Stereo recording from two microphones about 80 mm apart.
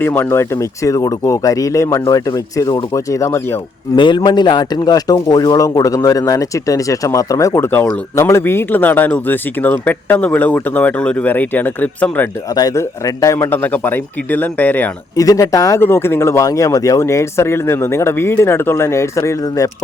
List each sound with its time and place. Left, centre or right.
0.0 s speech: left
3.9 s a man's voice: left
4.2 s speech: left; by 12.3 s centre
12.7 s speech: left
13.5 s speech: left
15.1 s speech: left
15.8 s speech: left
16.4 s speech: left